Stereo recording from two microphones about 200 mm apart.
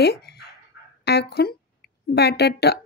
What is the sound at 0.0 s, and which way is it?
Dog, 55° left (ahead or behind).